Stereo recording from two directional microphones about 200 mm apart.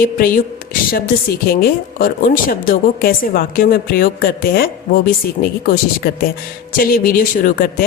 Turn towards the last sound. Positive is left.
turn(degrees=45)  # may be behind; listen again after turning